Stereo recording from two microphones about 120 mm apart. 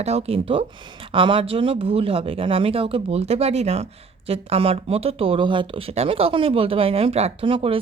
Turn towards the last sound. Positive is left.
turn(degrees=-50)  # may be behind; listen again after turning